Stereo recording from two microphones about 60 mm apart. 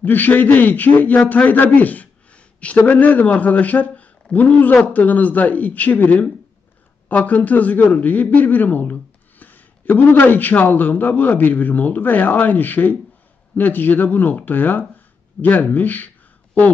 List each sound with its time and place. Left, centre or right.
0.0 s a man's voice: left